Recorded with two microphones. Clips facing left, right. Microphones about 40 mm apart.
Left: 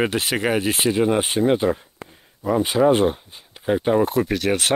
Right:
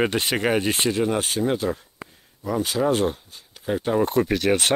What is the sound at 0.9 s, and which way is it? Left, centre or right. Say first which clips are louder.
Speech: left 4 dB; centre.